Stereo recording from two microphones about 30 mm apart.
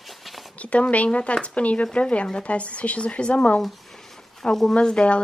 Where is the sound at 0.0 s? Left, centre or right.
Centre.